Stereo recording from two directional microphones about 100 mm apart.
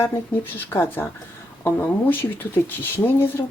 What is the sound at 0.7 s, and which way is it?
Speech, 25° left (ahead or behind).